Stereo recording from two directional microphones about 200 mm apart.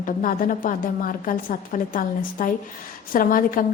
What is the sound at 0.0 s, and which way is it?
A woman's voice, 45° left (ahead or behind).